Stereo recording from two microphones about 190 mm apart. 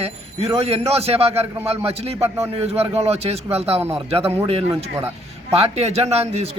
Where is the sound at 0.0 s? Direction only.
35° right (ahead or behind).